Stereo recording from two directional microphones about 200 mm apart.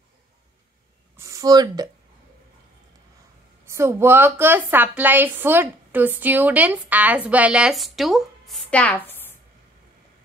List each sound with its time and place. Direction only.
1.1 s speech: 15° right (ahead or behind)
3.6 s a woman's voice: 15° right (ahead or behind); by 9.2 s 10° left (ahead or behind)